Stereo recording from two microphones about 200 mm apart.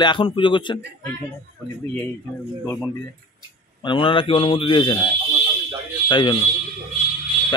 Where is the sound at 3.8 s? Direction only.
25° left (ahead or behind).